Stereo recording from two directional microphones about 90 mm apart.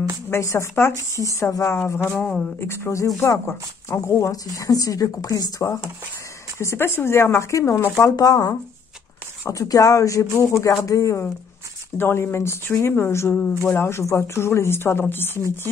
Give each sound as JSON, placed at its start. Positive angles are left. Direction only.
{"t": 0.3, "sound": "a woman's voice", "side_deg": 35}
{"t": 8.0, "sound": "a woman's voice", "side_deg": 40}